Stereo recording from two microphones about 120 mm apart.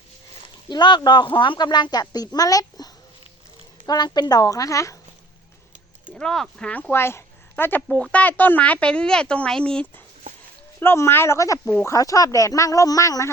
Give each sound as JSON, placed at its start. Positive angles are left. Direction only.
{"t": 0.7, "sound": "speech", "side_deg": 40}
{"t": 6.1, "sound": "speech", "side_deg": 5}
{"t": 7.8, "sound": "speech", "side_deg": 5}
{"t": 10.8, "sound": "speech", "side_deg": 20}